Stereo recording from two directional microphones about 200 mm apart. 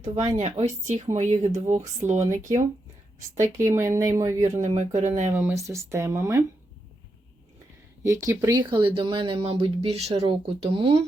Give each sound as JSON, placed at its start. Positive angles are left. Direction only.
{"t": 0.3, "sound": "speech", "side_deg": -35}
{"t": 3.2, "sound": "speech", "side_deg": -15}
{"t": 4.5, "sound": "speech", "side_deg": -35}
{"t": 5.3, "sound": "speech", "side_deg": -10}
{"t": 8.0, "sound": "speech", "side_deg": -15}